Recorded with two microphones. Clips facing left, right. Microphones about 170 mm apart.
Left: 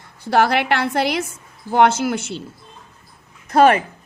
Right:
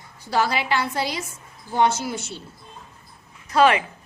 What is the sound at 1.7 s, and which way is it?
Speech, 75° left (ahead or behind).